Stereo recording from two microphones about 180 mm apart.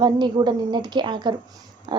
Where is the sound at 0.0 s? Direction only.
25° right (ahead or behind).